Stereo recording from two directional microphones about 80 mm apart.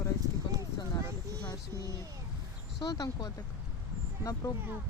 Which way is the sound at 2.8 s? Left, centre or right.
Left.